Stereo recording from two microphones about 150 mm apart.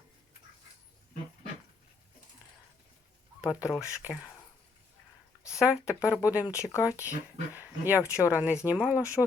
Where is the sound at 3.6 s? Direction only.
20° left (ahead or behind).